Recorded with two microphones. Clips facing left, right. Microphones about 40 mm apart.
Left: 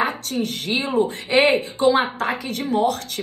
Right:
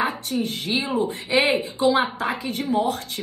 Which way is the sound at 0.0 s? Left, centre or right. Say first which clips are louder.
Left 1 dB; left.